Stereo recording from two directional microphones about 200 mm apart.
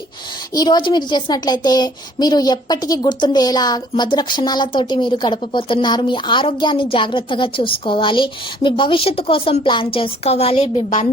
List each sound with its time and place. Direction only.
0.5 s a woman's voice: 20° left (ahead or behind)